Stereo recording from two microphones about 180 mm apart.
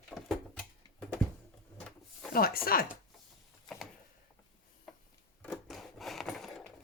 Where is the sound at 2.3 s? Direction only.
55° left (ahead or behind).